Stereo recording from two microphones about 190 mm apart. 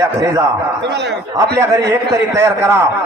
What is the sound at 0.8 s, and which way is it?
Speech, 65° right (ahead or behind).